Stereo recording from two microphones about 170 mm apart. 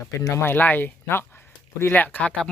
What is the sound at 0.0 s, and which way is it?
Speech, 15° left (ahead or behind).